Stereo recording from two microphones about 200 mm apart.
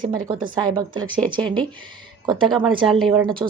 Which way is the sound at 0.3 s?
25° right (ahead or behind).